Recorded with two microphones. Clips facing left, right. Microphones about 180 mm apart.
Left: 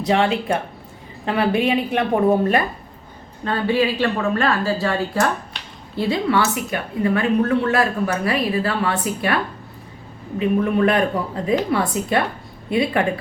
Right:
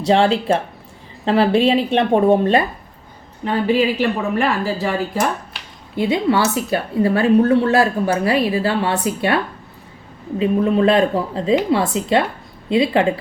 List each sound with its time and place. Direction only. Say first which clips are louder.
0.0 s a woman's voice: right 3 dB; 30° right (ahead or behind)
6.4 s speech: right 4 dB; 30° right (ahead or behind)